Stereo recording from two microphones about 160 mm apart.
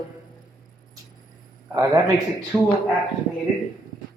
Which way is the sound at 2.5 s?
5° right (ahead or behind).